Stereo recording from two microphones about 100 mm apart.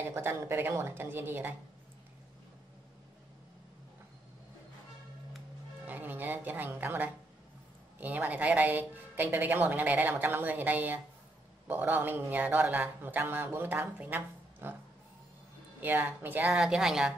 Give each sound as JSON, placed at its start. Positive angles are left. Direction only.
{"t": 0.0, "sound": "a man's voice", "side_deg": -25}
{"t": 5.9, "sound": "a man's voice", "side_deg": -20}
{"t": 15.8, "sound": "a man's voice", "side_deg": -20}
{"t": 16.5, "sound": "a woman's voice", "side_deg": -5}